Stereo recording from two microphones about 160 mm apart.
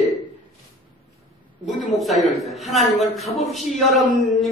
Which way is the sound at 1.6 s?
Centre (ahead or behind).